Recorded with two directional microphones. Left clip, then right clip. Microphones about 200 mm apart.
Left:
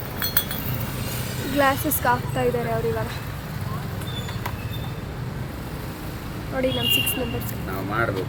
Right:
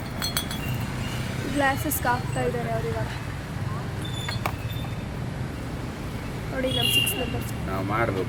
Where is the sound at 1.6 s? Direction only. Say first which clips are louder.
Left 4 dB; 15° left (ahead or behind).